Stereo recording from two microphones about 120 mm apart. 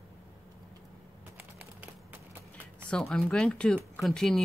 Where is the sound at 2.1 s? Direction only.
15° right (ahead or behind).